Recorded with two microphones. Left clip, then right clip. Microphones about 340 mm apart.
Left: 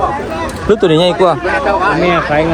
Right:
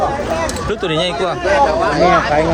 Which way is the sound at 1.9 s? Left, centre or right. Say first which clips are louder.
Even; left.